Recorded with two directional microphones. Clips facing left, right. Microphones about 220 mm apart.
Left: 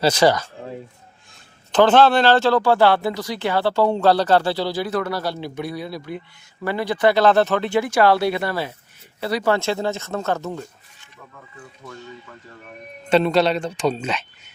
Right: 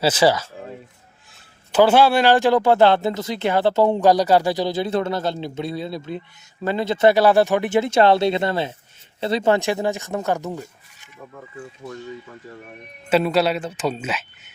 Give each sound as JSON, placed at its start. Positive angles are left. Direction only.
{"t": 0.0, "sound": "speech", "side_deg": -5}
{"t": 1.7, "sound": "speech", "side_deg": -10}
{"t": 7.2, "sound": "speech", "side_deg": -15}
{"t": 13.1, "sound": "speech", "side_deg": -5}